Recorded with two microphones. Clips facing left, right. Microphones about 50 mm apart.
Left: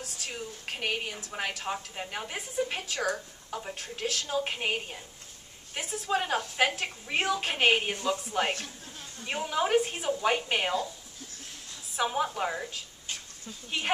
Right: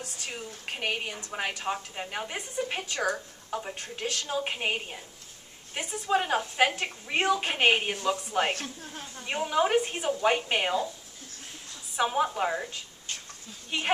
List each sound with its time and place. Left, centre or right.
0.0 s a woman's voice: centre
8.5 s a woman's voice: right
9.2 s a woman's voice: centre
12.0 s a woman's voice: centre